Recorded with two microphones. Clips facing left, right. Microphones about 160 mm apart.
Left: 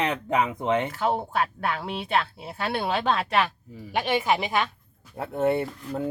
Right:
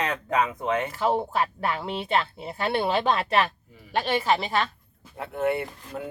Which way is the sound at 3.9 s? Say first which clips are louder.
Even; 10° left (ahead or behind).